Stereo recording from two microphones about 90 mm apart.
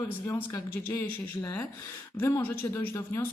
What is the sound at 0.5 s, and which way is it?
A woman's voice, 35° left (ahead or behind).